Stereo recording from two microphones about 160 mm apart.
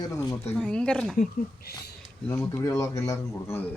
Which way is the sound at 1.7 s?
90° left.